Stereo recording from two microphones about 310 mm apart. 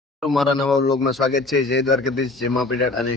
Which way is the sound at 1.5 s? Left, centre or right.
Left.